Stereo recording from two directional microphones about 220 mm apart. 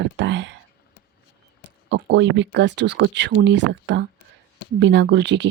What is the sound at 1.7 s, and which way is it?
Speech, 55° right (ahead or behind).